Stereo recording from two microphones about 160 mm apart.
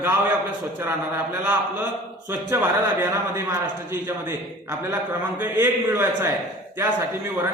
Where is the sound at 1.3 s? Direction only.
15° right (ahead or behind).